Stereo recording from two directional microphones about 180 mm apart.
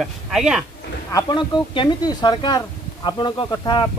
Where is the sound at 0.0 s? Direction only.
5° right (ahead or behind).